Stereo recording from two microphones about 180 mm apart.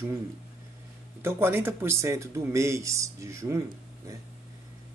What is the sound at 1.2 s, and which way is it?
Speech, 15° right (ahead or behind).